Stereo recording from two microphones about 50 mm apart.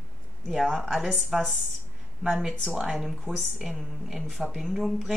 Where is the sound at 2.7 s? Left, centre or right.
Centre.